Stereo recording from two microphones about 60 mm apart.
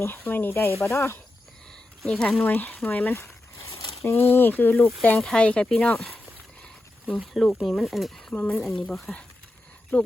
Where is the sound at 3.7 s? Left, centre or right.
Left.